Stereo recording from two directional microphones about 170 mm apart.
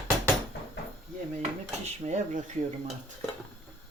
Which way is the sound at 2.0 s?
45° right (ahead or behind).